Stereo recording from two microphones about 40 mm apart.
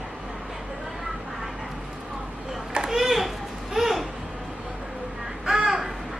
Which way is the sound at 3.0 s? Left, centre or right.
Centre.